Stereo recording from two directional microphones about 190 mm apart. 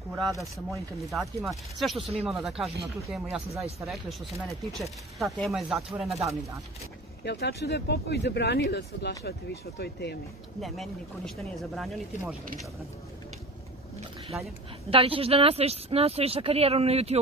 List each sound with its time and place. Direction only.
0.1 s speech: centre (ahead or behind)
7.2 s speech: 60° left (ahead or behind)
10.6 s speech: centre (ahead or behind)
14.9 s speech: 30° right (ahead or behind)